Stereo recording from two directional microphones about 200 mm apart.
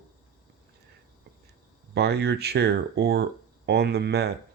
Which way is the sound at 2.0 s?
55° right (ahead or behind).